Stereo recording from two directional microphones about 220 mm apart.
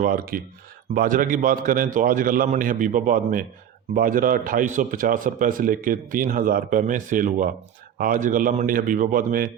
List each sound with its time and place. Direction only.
0.0 s a man's voice: 40° right (ahead or behind)